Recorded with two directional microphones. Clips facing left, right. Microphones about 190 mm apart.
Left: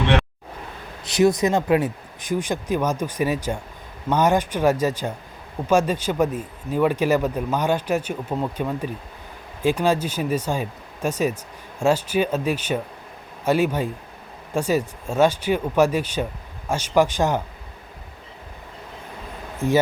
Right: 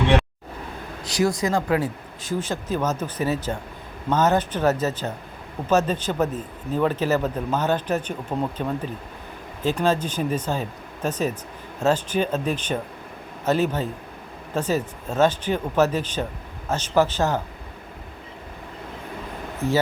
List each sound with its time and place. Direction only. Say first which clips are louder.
1.0 s a man's voice: left 4 dB; 20° left (ahead or behind)